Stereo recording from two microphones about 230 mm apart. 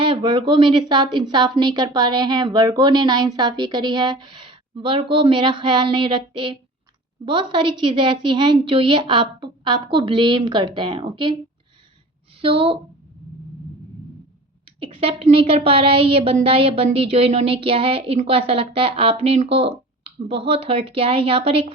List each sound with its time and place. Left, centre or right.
0.0 s a woman's voice: right
12.4 s a woman's voice: right
14.8 s a woman's voice: right